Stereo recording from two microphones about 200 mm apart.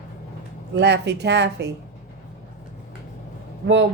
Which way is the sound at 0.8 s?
60° right (ahead or behind).